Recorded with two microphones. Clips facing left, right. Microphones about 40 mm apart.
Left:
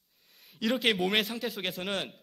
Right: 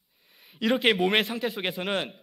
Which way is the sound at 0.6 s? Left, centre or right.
Centre.